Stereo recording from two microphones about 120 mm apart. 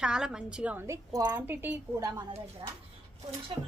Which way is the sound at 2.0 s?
25° right (ahead or behind).